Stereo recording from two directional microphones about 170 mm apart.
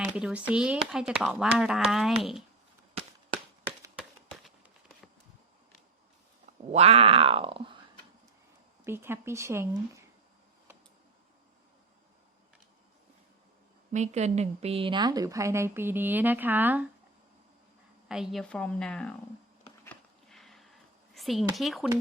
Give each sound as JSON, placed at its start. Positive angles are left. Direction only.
{"t": 0.0, "sound": "speech", "side_deg": -5}
{"t": 6.7, "sound": "grunt", "side_deg": -35}
{"t": 8.8, "sound": "a woman's voice", "side_deg": -15}
{"t": 13.9, "sound": "a woman's voice", "side_deg": -40}
{"t": 18.1, "sound": "speech", "side_deg": 0}
{"t": 19.8, "sound": "a sound", "side_deg": 5}
{"t": 21.2, "sound": "speech", "side_deg": 0}